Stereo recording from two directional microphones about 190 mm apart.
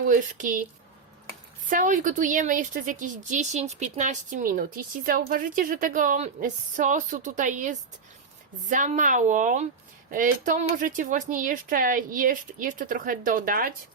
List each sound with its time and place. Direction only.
0.0 s speech: 45° right (ahead or behind)
1.7 s speech: 45° right (ahead or behind)